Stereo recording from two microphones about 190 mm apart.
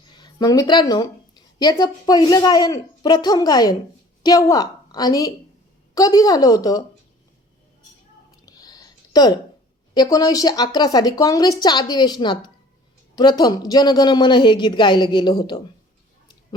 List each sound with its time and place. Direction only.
0.1 s a woman's voice: 20° left (ahead or behind)
8.4 s a sound: 20° left (ahead or behind)
9.9 s a woman's voice: 20° left (ahead or behind)